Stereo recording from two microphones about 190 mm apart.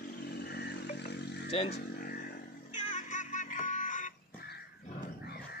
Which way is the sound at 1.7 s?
50° left (ahead or behind).